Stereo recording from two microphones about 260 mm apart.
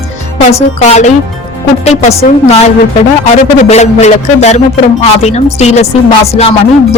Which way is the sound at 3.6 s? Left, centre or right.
Left.